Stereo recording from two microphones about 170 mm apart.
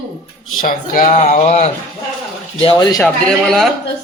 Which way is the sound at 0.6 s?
50° left (ahead or behind).